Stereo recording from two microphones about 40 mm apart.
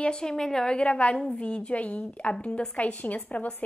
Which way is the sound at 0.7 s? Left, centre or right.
Left.